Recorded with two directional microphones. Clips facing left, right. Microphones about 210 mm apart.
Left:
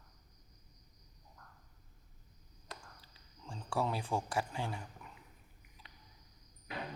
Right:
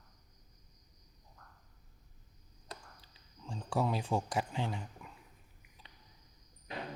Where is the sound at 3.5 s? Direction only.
20° right (ahead or behind).